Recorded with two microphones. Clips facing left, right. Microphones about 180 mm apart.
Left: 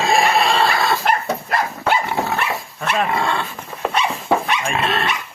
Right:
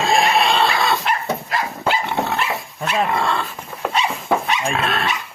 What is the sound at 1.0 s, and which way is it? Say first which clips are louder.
Dog: left 2 dB; 55° left (ahead or behind).